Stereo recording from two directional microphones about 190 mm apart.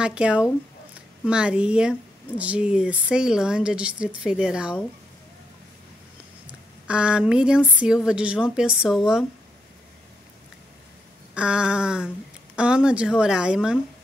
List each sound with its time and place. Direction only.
0.0 s speech: 5° right (ahead or behind)
6.4 s speech: 5° right (ahead or behind)
11.3 s speech: 5° right (ahead or behind)